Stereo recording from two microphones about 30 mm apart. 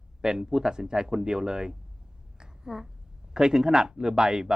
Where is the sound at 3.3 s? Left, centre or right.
Right.